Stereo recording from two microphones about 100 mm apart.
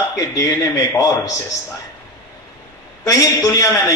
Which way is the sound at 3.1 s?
30° left (ahead or behind).